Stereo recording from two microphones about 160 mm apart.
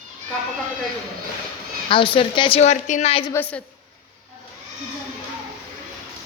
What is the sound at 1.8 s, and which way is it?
A woman's voice, 30° left (ahead or behind).